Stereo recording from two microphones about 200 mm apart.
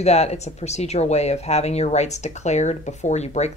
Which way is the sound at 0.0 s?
30° left (ahead or behind).